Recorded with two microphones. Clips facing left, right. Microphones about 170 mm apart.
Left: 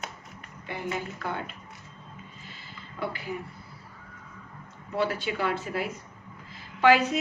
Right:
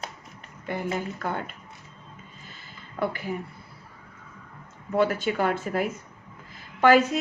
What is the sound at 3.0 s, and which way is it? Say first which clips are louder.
Speech: right 5 dB; 50° right (ahead or behind).